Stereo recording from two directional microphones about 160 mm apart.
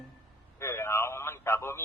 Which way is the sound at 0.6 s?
15° left (ahead or behind).